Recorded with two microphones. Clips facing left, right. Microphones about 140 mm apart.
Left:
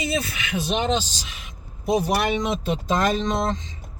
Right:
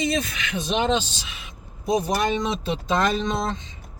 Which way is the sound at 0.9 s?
45° left (ahead or behind).